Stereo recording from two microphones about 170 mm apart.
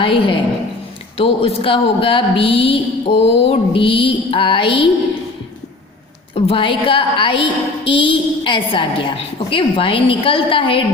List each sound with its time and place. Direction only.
0.0 s speech: 30° left (ahead or behind)
6.3 s a woman's voice: 35° left (ahead or behind)